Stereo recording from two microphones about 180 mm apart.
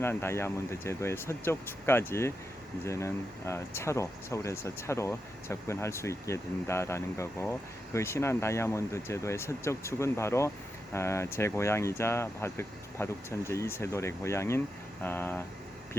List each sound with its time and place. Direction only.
0.0 s speech: 15° left (ahead or behind)